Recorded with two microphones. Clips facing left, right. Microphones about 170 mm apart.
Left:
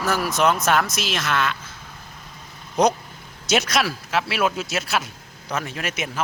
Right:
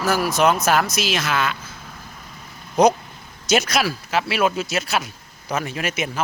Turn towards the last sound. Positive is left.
turn(degrees=0)  # may be behind; listen again after turning